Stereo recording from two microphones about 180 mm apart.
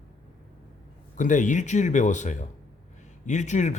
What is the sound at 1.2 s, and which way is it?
A man's voice, 45° left (ahead or behind).